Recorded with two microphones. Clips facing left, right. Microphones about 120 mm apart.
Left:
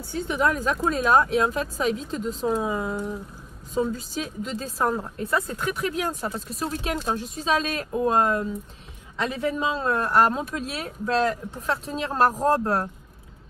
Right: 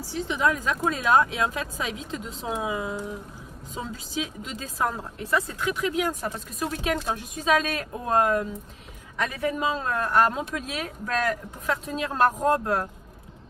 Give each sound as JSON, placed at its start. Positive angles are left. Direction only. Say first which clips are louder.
{"t": 0.3, "sound": "speech", "louder": "left 2 dB", "side_deg": 40}
{"t": 2.4, "sound": "speech", "louder": "left 3 dB", "side_deg": 0}
{"t": 3.9, "sound": "speech", "louder": "left 1 dB", "side_deg": 40}